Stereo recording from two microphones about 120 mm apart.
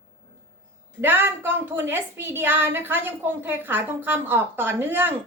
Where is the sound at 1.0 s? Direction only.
15° right (ahead or behind).